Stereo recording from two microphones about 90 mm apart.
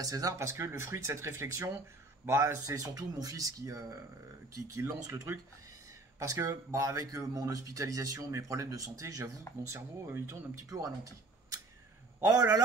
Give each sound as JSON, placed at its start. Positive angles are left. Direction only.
{"t": 0.0, "sound": "a man's voice", "side_deg": -40}